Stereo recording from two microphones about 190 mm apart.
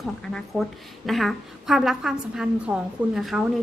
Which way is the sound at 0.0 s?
Centre (ahead or behind).